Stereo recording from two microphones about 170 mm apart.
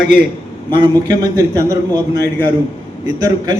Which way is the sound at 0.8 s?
25° right (ahead or behind).